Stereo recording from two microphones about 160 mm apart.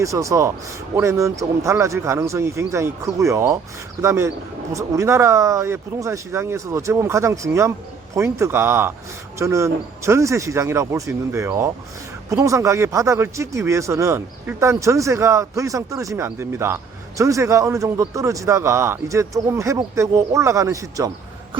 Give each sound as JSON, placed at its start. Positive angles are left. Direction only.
{"t": 0.0, "sound": "speech", "side_deg": -20}